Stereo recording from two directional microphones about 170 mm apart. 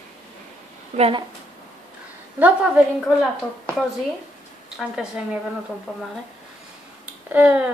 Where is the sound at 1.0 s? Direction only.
30° right (ahead or behind).